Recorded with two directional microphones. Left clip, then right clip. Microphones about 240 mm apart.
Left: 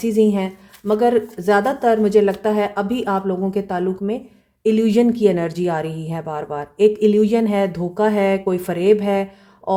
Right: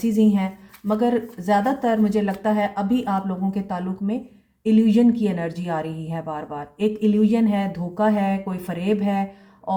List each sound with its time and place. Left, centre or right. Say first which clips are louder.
0.0 s speech: left 5 dB; left